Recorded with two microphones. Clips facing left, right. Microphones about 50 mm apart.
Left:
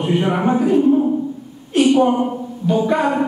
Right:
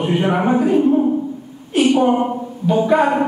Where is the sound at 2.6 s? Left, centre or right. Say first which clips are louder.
Right 2 dB; centre.